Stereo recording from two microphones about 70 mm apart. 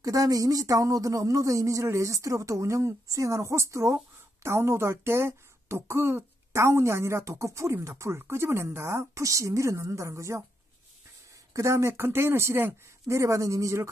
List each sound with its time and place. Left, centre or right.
0.0 s a woman's voice: right
11.5 s a woman's voice: right
13.0 s speech: right